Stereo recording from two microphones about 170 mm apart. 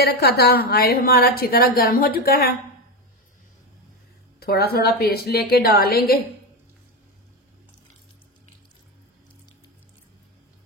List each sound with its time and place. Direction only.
0.0 s speech: 70° left (ahead or behind)
4.4 s speech: 65° left (ahead or behind)